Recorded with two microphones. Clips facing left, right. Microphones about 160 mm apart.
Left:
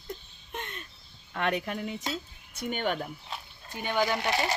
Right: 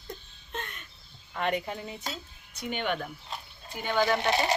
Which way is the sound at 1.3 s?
70° left (ahead or behind).